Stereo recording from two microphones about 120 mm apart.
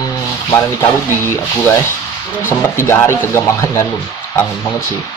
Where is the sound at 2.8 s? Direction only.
20° left (ahead or behind).